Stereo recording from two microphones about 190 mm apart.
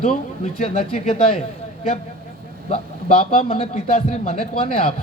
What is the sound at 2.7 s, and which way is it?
A man's voice, 30° left (ahead or behind).